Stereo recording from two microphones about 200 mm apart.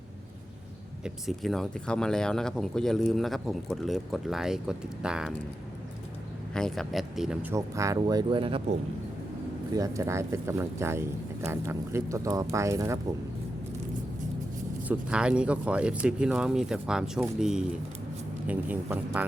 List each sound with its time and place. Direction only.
1.0 s speech: centre (ahead or behind)
6.5 s speech: 5° left (ahead or behind)
7.5 s speech: 15° right (ahead or behind)
9.7 s speech: 15° right (ahead or behind)
14.8 s speech: 5° right (ahead or behind)